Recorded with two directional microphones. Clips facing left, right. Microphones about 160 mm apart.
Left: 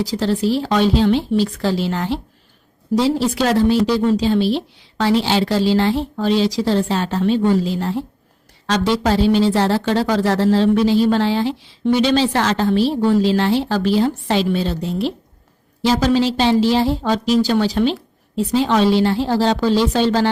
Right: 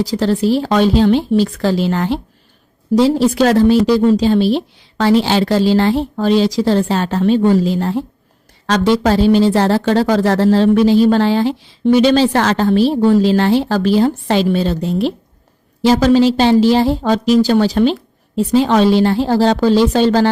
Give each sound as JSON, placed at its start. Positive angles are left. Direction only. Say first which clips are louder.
{"t": 0.1, "sound": "speech", "louder": "right 4 dB", "side_deg": -45}
{"t": 3.2, "sound": "speech", "louder": "right 5 dB", "side_deg": -45}